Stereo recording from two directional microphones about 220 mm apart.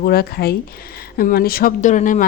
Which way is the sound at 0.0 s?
45° left (ahead or behind).